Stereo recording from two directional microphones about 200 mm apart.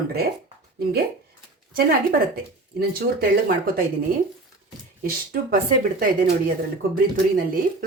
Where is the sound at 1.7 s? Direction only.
50° right (ahead or behind).